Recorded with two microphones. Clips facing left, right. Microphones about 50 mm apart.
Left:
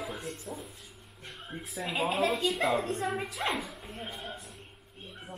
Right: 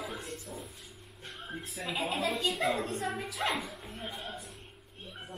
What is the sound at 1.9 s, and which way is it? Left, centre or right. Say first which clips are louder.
Speech: left 4 dB; left.